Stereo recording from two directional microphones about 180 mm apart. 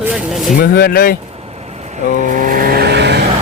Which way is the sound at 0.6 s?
60° left (ahead or behind).